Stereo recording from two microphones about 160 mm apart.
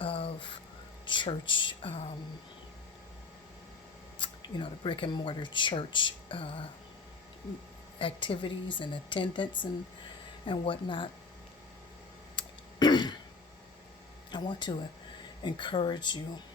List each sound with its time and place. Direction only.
0.0 s a sound: 35° left (ahead or behind)
1.0 s speech: 30° left (ahead or behind)
4.2 s speech: 30° left (ahead or behind)
7.9 s speech: 35° left (ahead or behind)
12.4 s throat clearing: 25° left (ahead or behind)
14.3 s speech: 30° left (ahead or behind)